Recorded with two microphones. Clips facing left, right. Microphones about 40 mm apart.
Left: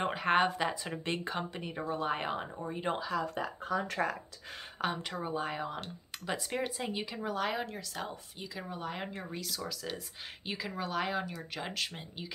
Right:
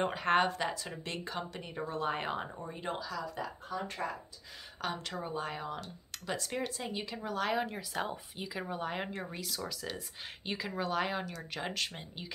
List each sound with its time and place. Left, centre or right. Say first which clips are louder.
0.0 s speech: left 1 dB; centre
0.9 s speech: left 4 dB; left; by 2.6 s centre
2.6 s speech: left 5 dB; centre
2.9 s speech: left 4 dB; left
3.9 s speech: left 5 dB; left
4.8 s speech: left 2 dB; centre
7.6 s speech: right 3 dB; centre